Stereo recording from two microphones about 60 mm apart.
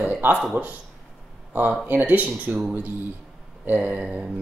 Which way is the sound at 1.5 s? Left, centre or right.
Right.